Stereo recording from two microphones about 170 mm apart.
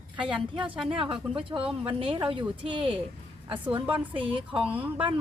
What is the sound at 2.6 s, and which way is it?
A woman's voice, 30° right (ahead or behind).